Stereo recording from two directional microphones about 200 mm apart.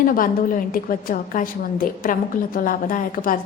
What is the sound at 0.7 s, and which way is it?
A woman's voice, 45° left (ahead or behind).